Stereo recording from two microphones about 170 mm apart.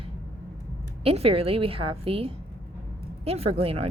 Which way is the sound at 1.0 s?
35° right (ahead or behind).